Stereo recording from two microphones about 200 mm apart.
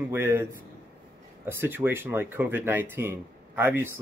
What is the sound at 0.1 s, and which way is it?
Speech, 10° right (ahead or behind).